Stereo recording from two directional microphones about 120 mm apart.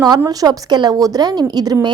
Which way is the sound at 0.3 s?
35° right (ahead or behind).